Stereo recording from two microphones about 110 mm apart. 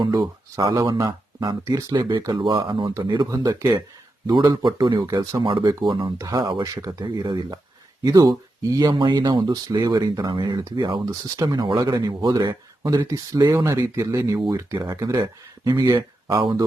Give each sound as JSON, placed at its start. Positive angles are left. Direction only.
{"t": 0.5, "sound": "speech", "side_deg": -35}
{"t": 3.2, "sound": "speech", "side_deg": -35}
{"t": 5.4, "sound": "speech", "side_deg": -50}
{"t": 6.1, "sound": "speech", "side_deg": -35}
{"t": 10.8, "sound": "speech", "side_deg": -45}